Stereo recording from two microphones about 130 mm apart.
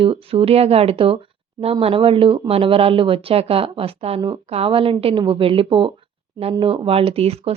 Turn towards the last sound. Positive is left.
turn(degrees=-50)  # may be behind; listen again after turning